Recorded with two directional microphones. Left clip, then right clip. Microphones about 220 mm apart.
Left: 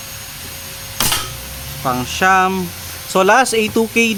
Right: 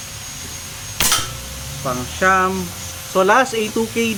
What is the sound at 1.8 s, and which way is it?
Speech, 50° left (ahead or behind).